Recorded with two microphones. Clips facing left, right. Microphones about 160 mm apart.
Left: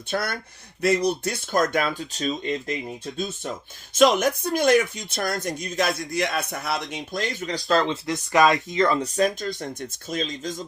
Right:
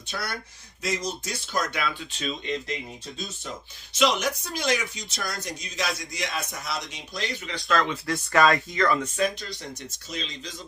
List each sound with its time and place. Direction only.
0.1 s speech: 50° left (ahead or behind)
3.2 s speech: 55° left (ahead or behind)